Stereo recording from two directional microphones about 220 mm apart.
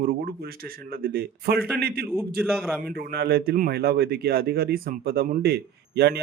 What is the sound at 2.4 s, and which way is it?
Speech, centre (ahead or behind).